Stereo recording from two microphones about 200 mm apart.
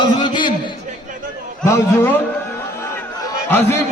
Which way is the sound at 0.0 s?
20° left (ahead or behind).